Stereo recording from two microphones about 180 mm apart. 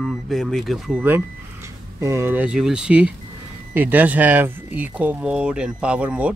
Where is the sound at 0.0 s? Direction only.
Centre (ahead or behind).